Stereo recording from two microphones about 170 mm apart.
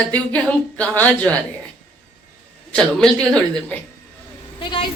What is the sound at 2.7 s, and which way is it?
Speech, 5° left (ahead or behind).